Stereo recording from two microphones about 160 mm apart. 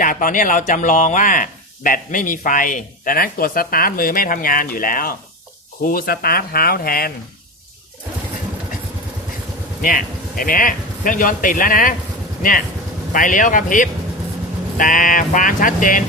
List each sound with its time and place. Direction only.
0.0 s speech: 55° left (ahead or behind)
9.8 s speech: 60° left (ahead or behind)